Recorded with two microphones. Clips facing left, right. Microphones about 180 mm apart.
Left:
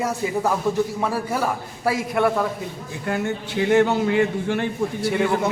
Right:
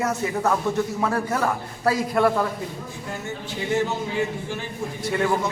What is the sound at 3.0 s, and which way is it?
A man's voice, 65° left (ahead or behind).